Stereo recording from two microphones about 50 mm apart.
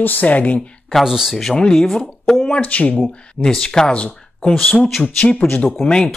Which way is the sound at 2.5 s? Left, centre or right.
Left.